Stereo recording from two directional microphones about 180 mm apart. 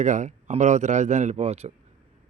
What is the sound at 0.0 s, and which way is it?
Speech, 45° right (ahead or behind).